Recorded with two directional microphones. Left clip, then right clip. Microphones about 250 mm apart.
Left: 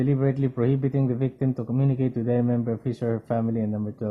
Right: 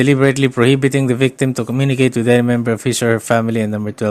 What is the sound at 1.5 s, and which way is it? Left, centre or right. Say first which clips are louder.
Speech: right 10 dB; right.